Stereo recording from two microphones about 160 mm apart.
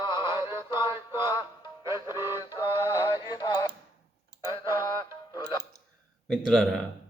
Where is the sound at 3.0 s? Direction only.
25° left (ahead or behind).